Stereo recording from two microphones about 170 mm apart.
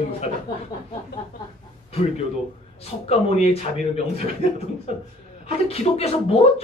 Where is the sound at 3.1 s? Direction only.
40° left (ahead or behind).